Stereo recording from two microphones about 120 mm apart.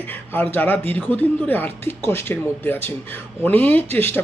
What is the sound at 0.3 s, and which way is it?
Speech, 15° left (ahead or behind).